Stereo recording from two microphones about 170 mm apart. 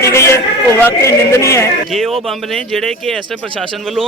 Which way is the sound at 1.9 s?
Centre (ahead or behind).